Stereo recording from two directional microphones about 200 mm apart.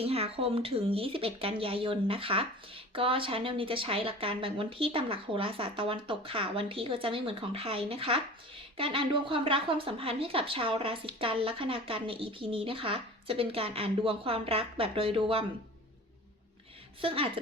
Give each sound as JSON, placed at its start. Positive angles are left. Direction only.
{"t": 0.0, "sound": "speech", "side_deg": -30}
{"t": 17.0, "sound": "speech", "side_deg": -25}